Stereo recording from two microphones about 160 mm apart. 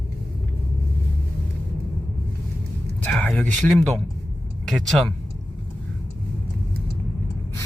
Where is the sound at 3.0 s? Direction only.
5° left (ahead or behind).